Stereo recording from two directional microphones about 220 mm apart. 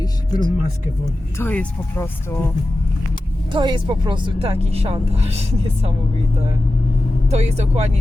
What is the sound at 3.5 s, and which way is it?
Speech, 20° right (ahead or behind).